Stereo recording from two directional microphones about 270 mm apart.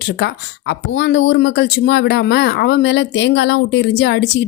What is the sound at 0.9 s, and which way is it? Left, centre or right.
A woman's voice, left.